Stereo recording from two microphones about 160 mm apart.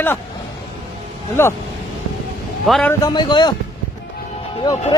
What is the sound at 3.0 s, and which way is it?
Speech, 25° left (ahead or behind).